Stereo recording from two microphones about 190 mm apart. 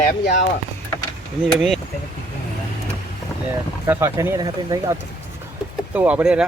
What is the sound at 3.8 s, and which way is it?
Speech, 15° right (ahead or behind).